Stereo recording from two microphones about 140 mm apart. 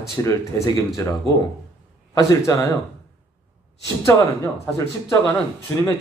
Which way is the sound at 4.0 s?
20° left (ahead or behind).